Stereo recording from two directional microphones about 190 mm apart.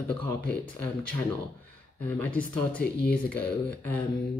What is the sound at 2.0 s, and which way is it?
Speech, 5° left (ahead or behind).